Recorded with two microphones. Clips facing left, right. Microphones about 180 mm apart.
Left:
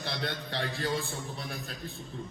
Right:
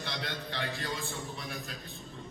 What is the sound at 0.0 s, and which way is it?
A man's voice, 35° left (ahead or behind).